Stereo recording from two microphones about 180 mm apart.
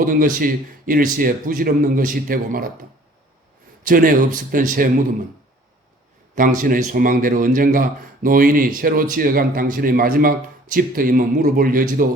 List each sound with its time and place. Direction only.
0.0 s a man's voice: 50° right (ahead or behind)
3.8 s a man's voice: 50° right (ahead or behind)
6.3 s a man's voice: 50° right (ahead or behind)